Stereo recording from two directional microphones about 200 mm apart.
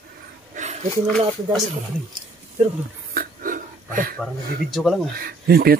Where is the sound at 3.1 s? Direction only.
45° right (ahead or behind).